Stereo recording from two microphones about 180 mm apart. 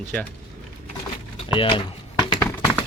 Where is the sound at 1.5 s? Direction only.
25° left (ahead or behind).